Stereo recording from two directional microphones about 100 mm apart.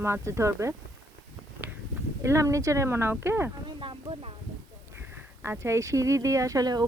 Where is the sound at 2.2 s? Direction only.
30° right (ahead or behind).